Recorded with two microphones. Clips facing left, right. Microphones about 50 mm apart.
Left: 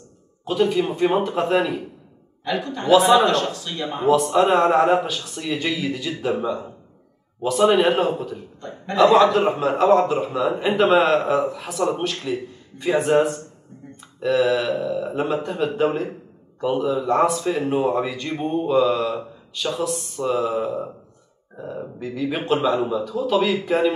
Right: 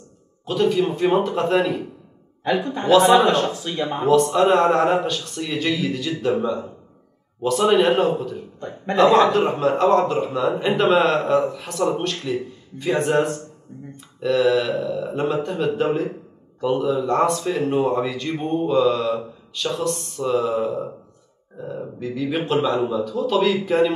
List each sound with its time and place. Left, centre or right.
0.5 s speech: centre
2.4 s speech: right
2.9 s speech: centre
3.3 s speech: centre
4.0 s speech: centre
8.5 s a man's voice: right
8.9 s speech: centre
21.5 s burping: centre
22.0 s speech: centre